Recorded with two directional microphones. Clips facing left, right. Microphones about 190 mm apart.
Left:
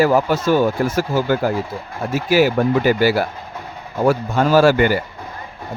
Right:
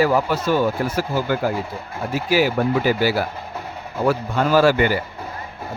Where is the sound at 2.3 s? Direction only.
50° left (ahead or behind).